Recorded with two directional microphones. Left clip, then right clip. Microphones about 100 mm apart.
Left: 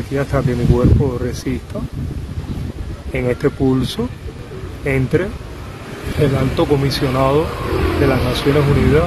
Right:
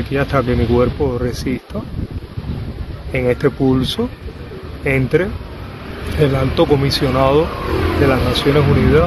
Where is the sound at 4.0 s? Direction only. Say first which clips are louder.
Right 2 dB; centre (ahead or behind).